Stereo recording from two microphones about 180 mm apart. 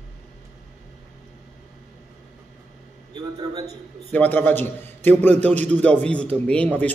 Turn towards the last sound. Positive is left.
turn(degrees=10)  # may be behind; listen again after turning